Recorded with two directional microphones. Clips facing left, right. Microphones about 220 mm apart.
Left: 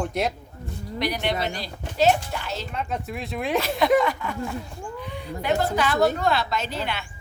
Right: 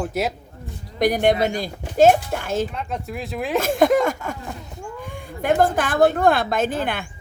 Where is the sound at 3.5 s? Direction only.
50° right (ahead or behind).